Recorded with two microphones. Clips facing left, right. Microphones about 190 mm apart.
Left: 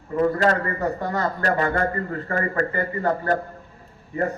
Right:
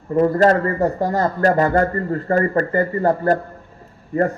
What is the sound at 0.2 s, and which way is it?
A man's voice, 40° right (ahead or behind).